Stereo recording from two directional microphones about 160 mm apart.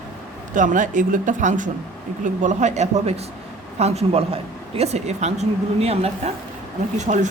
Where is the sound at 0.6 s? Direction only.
55° right (ahead or behind).